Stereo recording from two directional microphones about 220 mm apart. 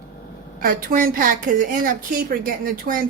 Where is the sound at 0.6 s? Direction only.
40° right (ahead or behind).